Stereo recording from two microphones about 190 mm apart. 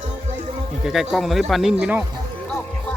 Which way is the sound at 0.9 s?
Centre (ahead or behind).